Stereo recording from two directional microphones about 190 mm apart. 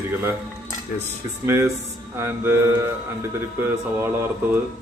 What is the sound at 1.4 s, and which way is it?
Speech, 15° right (ahead or behind).